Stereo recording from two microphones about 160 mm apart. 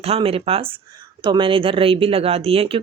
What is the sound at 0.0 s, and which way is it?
Speech, 40° right (ahead or behind).